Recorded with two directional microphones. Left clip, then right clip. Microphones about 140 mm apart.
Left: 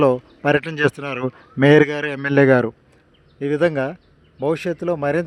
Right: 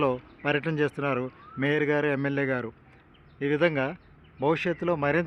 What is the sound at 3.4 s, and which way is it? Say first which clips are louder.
Speech: left 6 dB; 45° left (ahead or behind).